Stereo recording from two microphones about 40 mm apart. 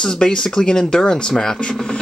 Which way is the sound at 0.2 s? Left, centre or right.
Centre.